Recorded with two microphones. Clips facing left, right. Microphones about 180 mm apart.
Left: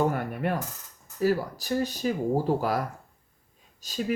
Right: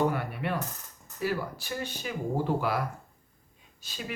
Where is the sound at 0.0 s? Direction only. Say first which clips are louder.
Left 2 dB; 45° left (ahead or behind).